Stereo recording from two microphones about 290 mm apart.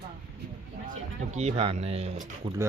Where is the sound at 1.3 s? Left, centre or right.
Right.